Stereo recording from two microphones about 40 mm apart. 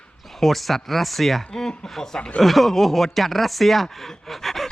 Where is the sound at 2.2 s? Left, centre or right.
Left.